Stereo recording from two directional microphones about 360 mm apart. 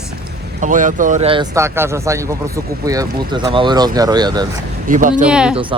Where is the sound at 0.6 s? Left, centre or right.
Right.